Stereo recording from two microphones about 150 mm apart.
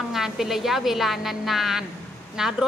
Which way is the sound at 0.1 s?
Centre (ahead or behind).